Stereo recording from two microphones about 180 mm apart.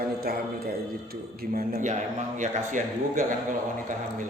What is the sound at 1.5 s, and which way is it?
A man's voice, 40° right (ahead or behind).